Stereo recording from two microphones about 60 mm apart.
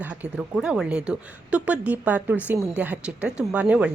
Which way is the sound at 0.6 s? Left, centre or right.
Centre.